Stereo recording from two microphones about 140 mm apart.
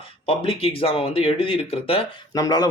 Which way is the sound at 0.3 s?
40° left (ahead or behind).